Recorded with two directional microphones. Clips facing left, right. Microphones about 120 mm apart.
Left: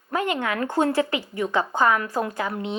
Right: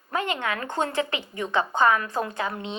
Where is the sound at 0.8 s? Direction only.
20° right (ahead or behind).